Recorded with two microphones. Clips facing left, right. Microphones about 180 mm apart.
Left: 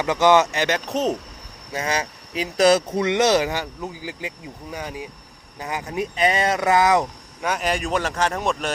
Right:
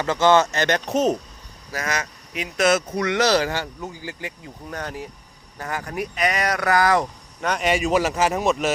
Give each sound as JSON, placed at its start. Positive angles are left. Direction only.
{"t": 0.0, "sound": "speech", "side_deg": 15}
{"t": 0.9, "sound": "speech", "side_deg": 0}
{"t": 1.7, "sound": "speech", "side_deg": 30}
{"t": 7.4, "sound": "speech", "side_deg": 5}